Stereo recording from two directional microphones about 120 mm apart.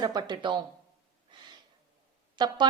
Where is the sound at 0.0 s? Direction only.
35° right (ahead or behind).